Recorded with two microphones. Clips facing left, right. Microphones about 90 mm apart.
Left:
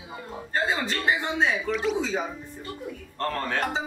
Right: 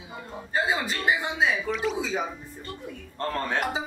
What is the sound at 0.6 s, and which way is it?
Speech, 5° right (ahead or behind).